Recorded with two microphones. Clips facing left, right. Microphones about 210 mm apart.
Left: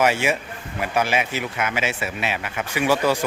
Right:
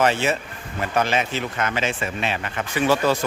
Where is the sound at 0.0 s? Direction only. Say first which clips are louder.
Even; 10° left (ahead or behind).